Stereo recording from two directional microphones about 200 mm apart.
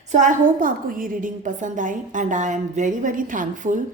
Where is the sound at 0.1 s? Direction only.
40° right (ahead or behind).